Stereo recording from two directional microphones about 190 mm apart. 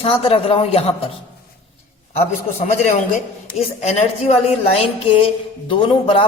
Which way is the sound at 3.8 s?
35° left (ahead or behind).